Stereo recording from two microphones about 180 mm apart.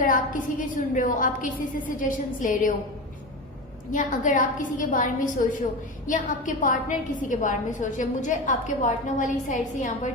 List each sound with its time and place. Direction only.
0.0 s a woman's voice: 50° left (ahead or behind)
3.9 s a woman's voice: 45° left (ahead or behind)